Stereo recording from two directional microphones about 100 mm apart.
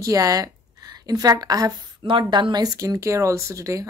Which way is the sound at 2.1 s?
55° right (ahead or behind).